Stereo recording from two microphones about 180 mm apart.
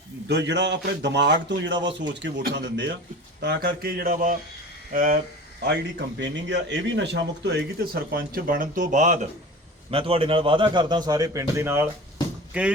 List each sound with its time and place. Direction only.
0.3 s speech: 75° right (ahead or behind)
3.4 s speech: 65° right (ahead or behind)
6.1 s speech: 80° right; by 9.2 s 45° right (ahead or behind)
9.9 s a man's voice: 30° right (ahead or behind); by 12.7 s 5° right (ahead or behind)